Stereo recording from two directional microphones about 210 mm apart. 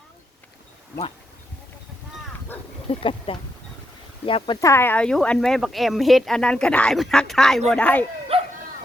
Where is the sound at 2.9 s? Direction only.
25° left (ahead or behind).